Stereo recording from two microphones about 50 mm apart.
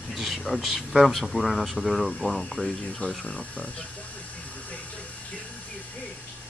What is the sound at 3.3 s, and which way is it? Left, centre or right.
Speech, left.